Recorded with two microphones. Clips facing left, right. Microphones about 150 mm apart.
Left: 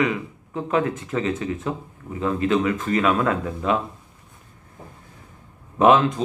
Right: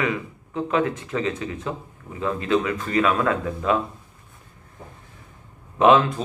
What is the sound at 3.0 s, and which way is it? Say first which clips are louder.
Speech: right 2 dB; 25° left (ahead or behind).